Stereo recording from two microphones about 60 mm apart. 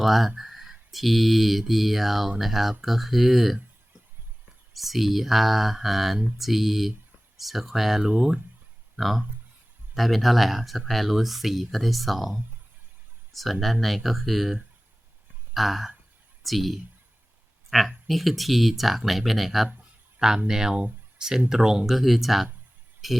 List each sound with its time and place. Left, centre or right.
0.0 s speech: centre
4.7 s speech: centre
13.3 s speech: centre
19.6 s a sound: centre
20.1 s speech: centre